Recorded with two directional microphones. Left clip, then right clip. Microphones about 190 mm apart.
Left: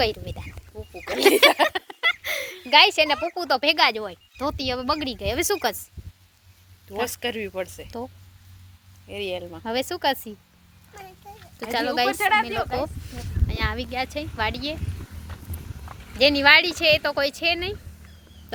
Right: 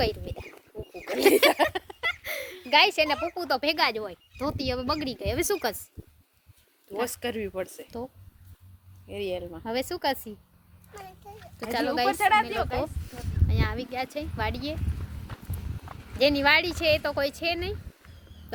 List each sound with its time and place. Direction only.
0.0 s speech: 10° left (ahead or behind)
0.9 s a sound: 5° left (ahead or behind)
2.6 s a woman's voice: centre (ahead or behind)
7.0 s speech: 35° right (ahead or behind)
9.0 s speech: 25° right (ahead or behind)
9.6 s a woman's voice: 5° left (ahead or behind)
11.7 s a woman's voice: centre (ahead or behind)
12.1 s speech: 65° right (ahead or behind)
12.5 s a woman's voice: centre (ahead or behind)
15.9 s a woman's voice: centre (ahead or behind)